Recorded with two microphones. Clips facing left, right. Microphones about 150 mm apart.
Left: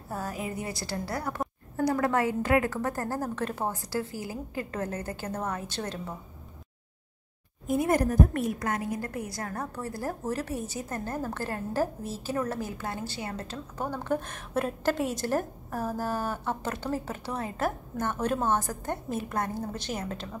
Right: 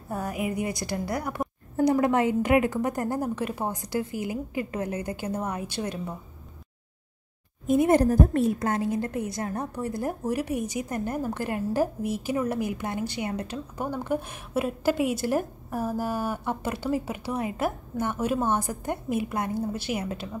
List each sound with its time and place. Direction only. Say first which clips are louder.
0.1 s a woman's voice: right 4 dB; 15° right (ahead or behind)
7.6 s a woman's voice: right 5 dB; 20° right (ahead or behind)